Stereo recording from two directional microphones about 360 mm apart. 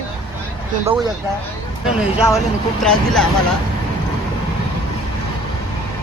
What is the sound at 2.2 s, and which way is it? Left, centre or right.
A man's voice, centre.